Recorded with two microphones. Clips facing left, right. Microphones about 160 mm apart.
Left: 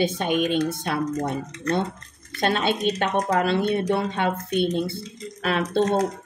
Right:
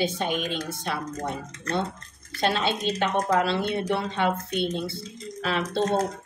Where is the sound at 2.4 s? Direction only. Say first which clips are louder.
Left 3 dB; 55° left (ahead or behind).